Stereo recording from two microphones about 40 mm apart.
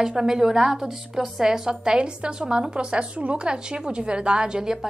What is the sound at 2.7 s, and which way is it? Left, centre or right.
A woman's voice, right.